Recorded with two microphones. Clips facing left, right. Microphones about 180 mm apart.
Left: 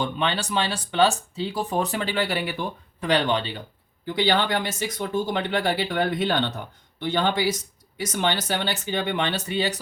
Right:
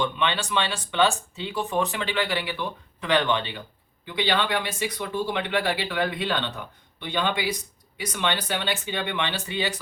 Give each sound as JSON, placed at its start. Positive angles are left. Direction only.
{"t": 0.0, "sound": "speech", "side_deg": 40}